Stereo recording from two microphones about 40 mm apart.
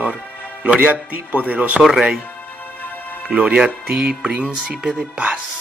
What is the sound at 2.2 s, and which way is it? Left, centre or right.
Music, left.